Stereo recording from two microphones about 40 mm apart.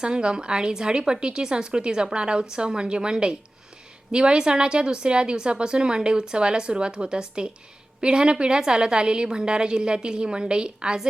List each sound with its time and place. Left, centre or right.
0.0 s a woman's voice: right